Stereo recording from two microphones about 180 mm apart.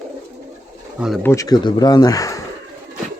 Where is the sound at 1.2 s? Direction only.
15° left (ahead or behind).